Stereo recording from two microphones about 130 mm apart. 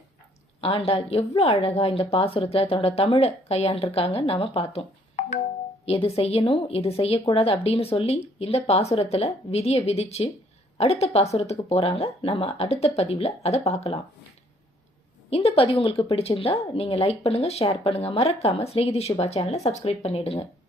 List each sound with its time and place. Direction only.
0.6 s a woman's voice: 50° left (ahead or behind)
15.3 s a woman's voice: 50° left (ahead or behind)